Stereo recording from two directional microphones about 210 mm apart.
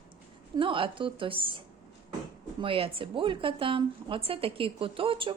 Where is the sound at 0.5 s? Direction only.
25° right (ahead or behind).